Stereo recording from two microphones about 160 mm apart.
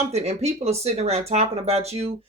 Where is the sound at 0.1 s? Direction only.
40° right (ahead or behind).